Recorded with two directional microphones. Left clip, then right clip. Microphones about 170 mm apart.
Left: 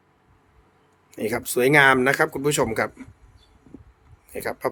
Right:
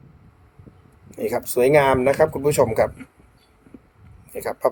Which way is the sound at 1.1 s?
30° left (ahead or behind).